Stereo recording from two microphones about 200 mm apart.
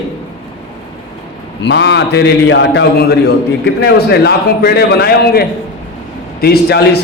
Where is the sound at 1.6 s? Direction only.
60° left (ahead or behind).